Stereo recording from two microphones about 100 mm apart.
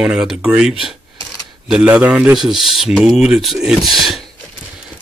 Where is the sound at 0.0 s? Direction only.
5° right (ahead or behind).